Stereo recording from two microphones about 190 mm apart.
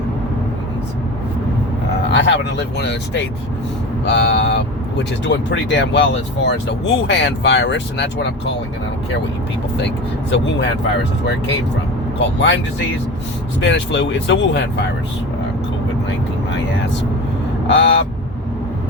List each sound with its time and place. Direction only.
2.0 s speech: 70° left (ahead or behind)
10.2 s speech: 70° left (ahead or behind)
12.2 s speech: 70° left (ahead or behind)
13.6 s speech: 70° left (ahead or behind)
17.7 s speech: 70° left (ahead or behind)